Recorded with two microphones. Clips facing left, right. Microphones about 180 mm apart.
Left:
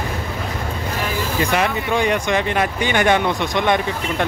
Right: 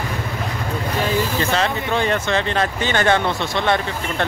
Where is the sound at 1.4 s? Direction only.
15° left (ahead or behind).